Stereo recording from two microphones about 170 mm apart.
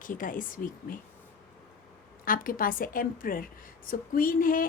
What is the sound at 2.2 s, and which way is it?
A woman's voice, 55° left (ahead or behind).